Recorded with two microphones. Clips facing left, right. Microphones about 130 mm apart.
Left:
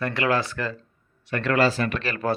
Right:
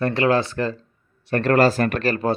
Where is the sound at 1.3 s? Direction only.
40° right (ahead or behind).